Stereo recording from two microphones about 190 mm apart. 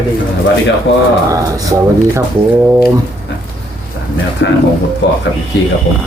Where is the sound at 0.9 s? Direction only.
65° left (ahead or behind).